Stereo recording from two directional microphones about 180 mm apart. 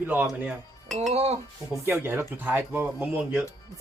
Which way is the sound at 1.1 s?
35° right (ahead or behind).